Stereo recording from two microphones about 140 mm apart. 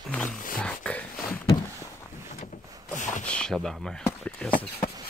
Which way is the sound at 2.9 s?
65° left (ahead or behind).